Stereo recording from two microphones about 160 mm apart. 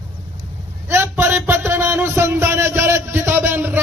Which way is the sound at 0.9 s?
15° right (ahead or behind).